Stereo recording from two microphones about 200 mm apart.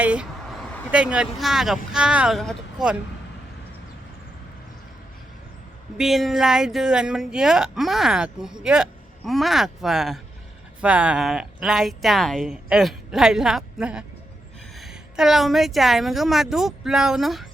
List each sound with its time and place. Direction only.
0.0 s speech: 5° right (ahead or behind)
6.0 s speech: centre (ahead or behind)